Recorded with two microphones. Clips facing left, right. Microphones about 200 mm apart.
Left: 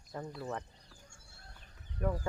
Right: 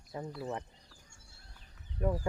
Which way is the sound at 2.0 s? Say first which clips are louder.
Right 2 dB; 25° right (ahead or behind).